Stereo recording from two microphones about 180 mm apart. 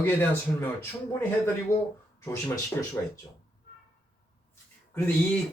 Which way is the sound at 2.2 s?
15° left (ahead or behind).